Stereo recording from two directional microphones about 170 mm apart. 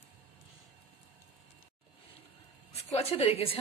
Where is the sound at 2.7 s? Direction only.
35° left (ahead or behind).